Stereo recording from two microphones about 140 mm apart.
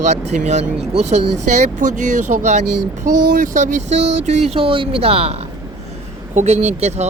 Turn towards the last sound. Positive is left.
turn(degrees=-50)  # may be behind; listen again after turning